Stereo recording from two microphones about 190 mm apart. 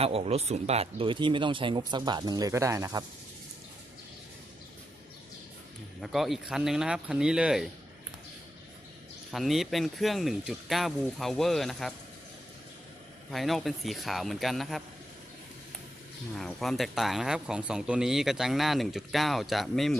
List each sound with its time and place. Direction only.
0.0 s speech: 30° right (ahead or behind); by 3.0 s 15° right (ahead or behind)
6.0 s speech: centre (ahead or behind)
9.3 s speech: centre (ahead or behind)
13.3 s speech: centre (ahead or behind)
16.3 s speech: centre (ahead or behind)